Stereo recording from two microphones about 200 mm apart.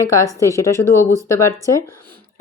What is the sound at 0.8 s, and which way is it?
Speech, 15° left (ahead or behind).